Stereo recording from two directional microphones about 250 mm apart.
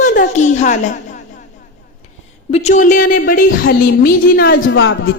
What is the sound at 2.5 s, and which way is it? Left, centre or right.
A woman's voice, left.